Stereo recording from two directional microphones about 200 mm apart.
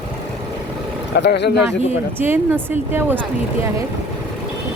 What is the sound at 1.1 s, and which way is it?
Speech, 60° left (ahead or behind).